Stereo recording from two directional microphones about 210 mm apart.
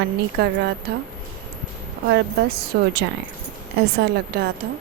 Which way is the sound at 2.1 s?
50° right (ahead or behind).